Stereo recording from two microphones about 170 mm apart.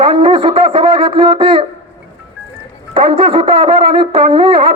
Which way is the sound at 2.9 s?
35° right (ahead or behind).